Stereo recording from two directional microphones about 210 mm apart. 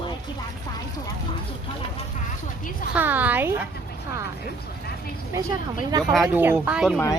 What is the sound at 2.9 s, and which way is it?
Speech, 10° right (ahead or behind).